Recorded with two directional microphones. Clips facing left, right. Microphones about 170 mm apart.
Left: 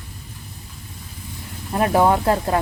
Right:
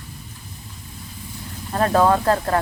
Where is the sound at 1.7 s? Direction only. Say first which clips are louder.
Even; 15° left (ahead or behind).